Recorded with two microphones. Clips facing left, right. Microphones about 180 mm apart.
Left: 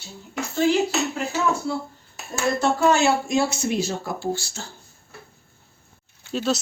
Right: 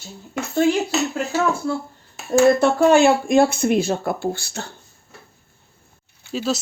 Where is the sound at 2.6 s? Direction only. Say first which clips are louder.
Right 5 dB; 55° right (ahead or behind).